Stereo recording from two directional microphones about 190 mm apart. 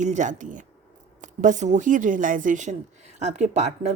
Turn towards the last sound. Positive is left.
turn(degrees=-35)  # may be behind; listen again after turning